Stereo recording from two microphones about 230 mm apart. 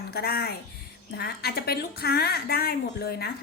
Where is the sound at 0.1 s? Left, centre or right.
Left.